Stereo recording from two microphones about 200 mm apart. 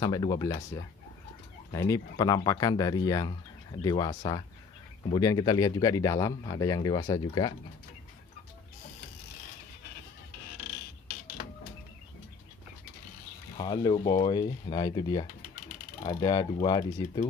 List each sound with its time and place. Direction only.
0.0 s speech: 20° left (ahead or behind)
13.6 s speech: 20° left (ahead or behind)